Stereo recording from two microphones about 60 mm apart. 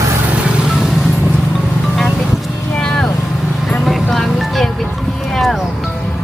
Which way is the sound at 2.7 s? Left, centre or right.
Centre.